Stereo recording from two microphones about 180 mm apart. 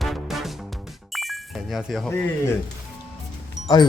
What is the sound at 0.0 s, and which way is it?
Music, centre (ahead or behind).